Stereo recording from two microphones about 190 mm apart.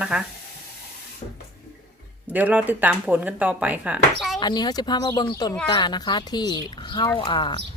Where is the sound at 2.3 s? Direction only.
10° right (ahead or behind).